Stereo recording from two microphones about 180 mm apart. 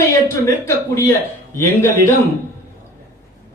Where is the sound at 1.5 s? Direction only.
15° left (ahead or behind).